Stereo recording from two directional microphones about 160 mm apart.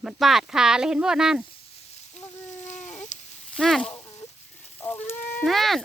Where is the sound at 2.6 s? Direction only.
45° left (ahead or behind).